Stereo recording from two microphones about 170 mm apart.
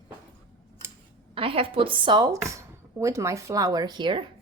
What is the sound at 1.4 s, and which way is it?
A woman's voice, 30° right (ahead or behind).